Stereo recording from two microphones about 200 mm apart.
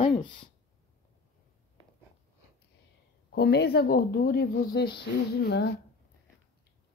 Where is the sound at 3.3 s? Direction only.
55° left (ahead or behind).